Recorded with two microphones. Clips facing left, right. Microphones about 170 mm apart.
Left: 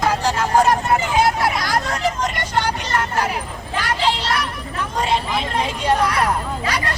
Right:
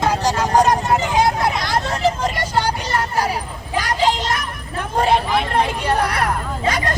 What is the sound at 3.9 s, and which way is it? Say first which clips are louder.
Child singing: right 2 dB; 45° right (ahead or behind).